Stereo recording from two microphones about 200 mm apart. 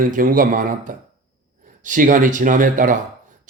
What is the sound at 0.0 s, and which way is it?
Speech, 45° right (ahead or behind).